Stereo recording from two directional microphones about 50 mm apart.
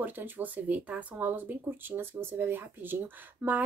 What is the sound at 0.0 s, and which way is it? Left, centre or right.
Speech, right.